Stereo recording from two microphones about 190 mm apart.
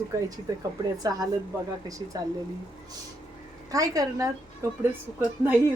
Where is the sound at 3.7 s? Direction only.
20° right (ahead or behind).